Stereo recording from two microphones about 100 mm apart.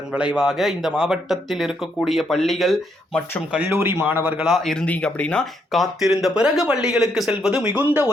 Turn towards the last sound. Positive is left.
turn(degrees=-15)  # may be behind; listen again after turning